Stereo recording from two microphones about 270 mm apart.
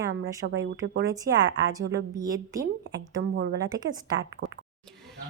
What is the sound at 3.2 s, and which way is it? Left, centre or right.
Speech, right.